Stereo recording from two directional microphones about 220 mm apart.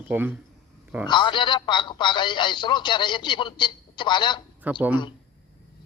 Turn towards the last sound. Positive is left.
turn(degrees=-10)  # may be behind; listen again after turning